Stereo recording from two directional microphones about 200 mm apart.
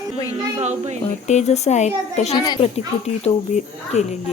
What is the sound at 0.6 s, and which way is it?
Speech, 35° right (ahead or behind).